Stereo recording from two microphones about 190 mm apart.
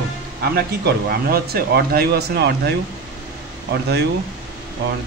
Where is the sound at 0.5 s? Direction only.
55° right (ahead or behind).